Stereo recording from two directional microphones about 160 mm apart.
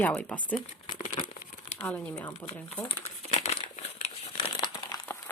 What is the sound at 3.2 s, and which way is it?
Crumpling, 45° left (ahead or behind).